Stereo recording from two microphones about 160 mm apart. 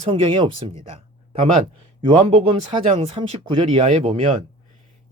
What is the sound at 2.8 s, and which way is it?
Speech, 45° right (ahead or behind).